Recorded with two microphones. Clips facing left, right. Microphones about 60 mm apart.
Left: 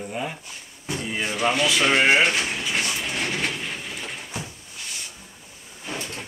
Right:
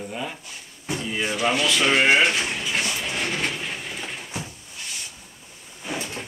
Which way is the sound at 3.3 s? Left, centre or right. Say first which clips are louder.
Even; centre.